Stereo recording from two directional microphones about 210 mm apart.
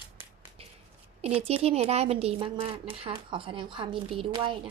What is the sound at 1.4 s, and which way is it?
Speech, 30° right (ahead or behind).